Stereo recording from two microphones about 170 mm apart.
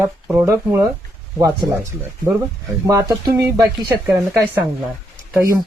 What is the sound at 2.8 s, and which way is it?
Speech, 15° right (ahead or behind).